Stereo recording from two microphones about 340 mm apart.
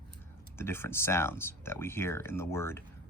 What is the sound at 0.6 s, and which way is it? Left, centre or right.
Speech, centre.